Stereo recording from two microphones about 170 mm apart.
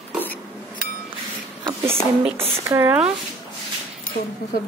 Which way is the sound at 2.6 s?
15° right (ahead or behind).